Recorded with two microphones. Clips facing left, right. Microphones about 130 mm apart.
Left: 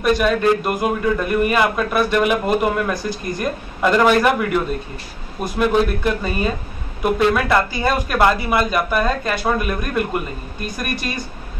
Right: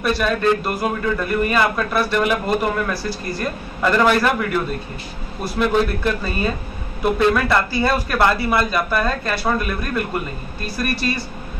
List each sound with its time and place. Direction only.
0.0 s a man's voice: 15° left (ahead or behind)